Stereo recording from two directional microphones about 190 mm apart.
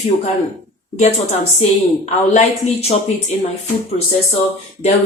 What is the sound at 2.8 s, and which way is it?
Speech, 35° left (ahead or behind).